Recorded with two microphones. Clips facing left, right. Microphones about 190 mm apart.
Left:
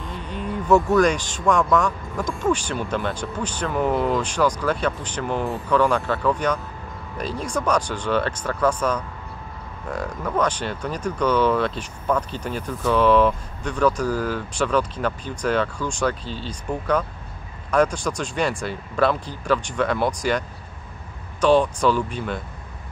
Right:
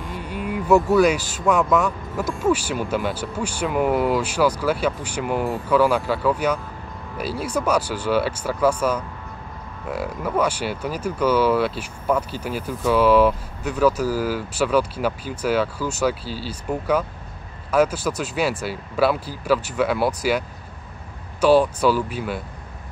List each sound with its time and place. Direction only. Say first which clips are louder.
0.1 s speech: right 2 dB; 10° right (ahead or behind)